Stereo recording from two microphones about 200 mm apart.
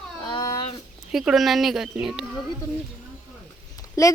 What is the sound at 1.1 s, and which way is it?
Speech, centre (ahead or behind).